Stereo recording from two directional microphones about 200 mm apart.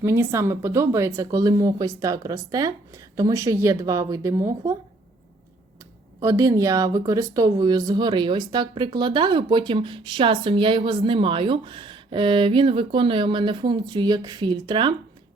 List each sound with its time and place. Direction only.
0.0 s speech: 15° right (ahead or behind)
6.2 s speech: 15° right (ahead or behind)